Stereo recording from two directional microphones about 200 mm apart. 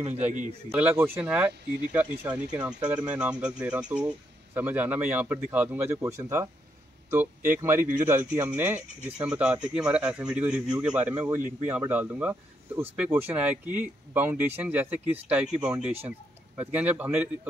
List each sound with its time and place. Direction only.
0.0 s a man's voice: 35° right (ahead or behind)
0.7 s speech: 5° right (ahead or behind)